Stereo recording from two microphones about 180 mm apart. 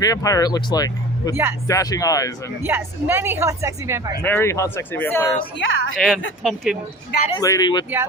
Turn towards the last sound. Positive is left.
turn(degrees=25)  # may be behind; listen again after turning